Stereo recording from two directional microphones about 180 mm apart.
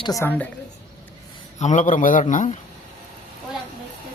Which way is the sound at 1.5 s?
40° left (ahead or behind).